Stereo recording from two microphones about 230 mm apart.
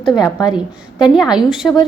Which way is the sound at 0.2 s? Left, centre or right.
Centre.